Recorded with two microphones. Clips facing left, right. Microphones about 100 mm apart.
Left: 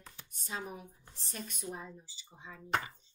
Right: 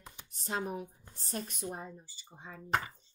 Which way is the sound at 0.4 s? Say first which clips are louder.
Right 6 dB; 45° right (ahead or behind).